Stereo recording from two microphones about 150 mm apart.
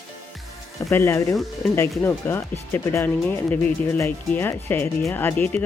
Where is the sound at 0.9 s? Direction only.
15° left (ahead or behind).